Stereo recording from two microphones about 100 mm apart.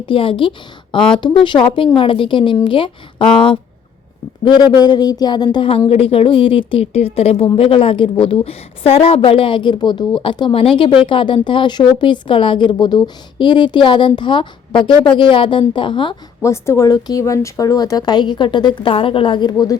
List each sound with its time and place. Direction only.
0.0 s a woman's voice: 60° left (ahead or behind)
4.4 s speech: 45° left (ahead or behind)
5.9 s a woman's voice: 75° left (ahead or behind); by 7.4 s 90° left
7.5 s a woman's voice: 65° left (ahead or behind)
16.4 s speech: 30° left (ahead or behind)